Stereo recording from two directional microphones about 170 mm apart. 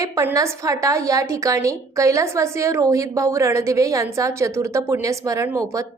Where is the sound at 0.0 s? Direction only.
20° right (ahead or behind).